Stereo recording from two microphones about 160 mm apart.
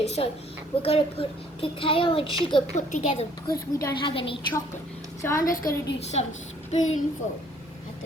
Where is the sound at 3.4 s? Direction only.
20° left (ahead or behind).